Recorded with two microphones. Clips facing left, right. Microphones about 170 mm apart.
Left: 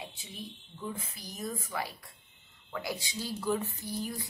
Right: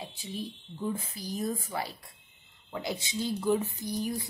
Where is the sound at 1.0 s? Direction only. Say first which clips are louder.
Right 6 dB; 35° right (ahead or behind).